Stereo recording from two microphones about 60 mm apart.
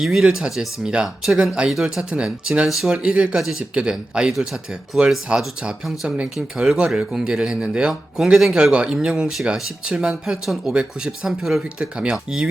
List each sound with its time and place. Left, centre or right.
0.0 s speech: centre
1.4 s speech: centre
5.3 s speech: centre
5.8 s speech: centre